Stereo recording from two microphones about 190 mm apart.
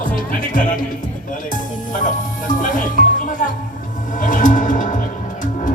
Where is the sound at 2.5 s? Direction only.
45° left (ahead or behind).